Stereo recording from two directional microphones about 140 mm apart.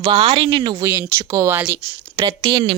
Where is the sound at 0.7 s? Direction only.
20° right (ahead or behind).